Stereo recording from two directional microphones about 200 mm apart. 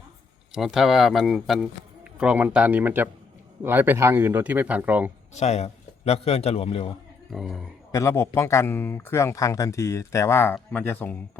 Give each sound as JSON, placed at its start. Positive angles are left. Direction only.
{"t": 0.5, "sound": "speech", "side_deg": 0}
{"t": 5.3, "sound": "a man's voice", "side_deg": 35}
{"t": 7.3, "sound": "speech", "side_deg": 0}
{"t": 7.9, "sound": "speech", "side_deg": 15}